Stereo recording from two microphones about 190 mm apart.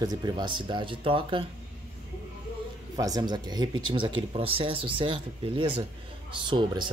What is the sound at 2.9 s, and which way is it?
Speech, 20° right (ahead or behind).